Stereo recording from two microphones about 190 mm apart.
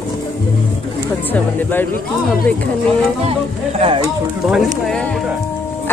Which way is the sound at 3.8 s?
30° right (ahead or behind).